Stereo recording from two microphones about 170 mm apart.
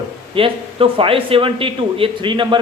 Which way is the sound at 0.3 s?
30° right (ahead or behind).